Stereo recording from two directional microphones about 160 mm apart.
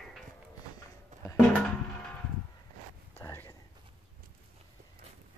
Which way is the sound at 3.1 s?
15° left (ahead or behind).